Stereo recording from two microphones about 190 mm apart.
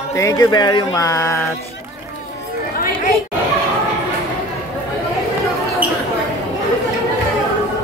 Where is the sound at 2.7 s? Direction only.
50° left (ahead or behind).